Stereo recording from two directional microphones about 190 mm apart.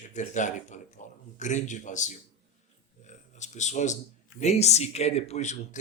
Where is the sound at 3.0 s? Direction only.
40° left (ahead or behind).